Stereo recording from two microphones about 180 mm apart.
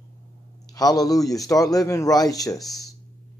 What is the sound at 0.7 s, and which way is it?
A man's voice, 20° left (ahead or behind).